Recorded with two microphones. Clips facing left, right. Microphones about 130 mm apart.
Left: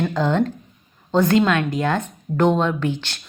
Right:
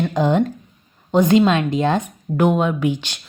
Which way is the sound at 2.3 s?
10° right (ahead or behind).